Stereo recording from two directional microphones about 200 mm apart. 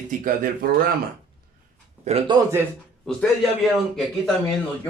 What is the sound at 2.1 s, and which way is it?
Speech, 30° right (ahead or behind).